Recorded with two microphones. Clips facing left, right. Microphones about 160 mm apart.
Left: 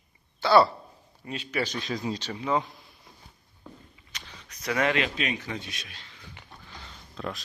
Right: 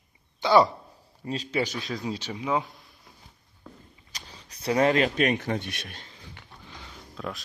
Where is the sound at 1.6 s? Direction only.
5° right (ahead or behind).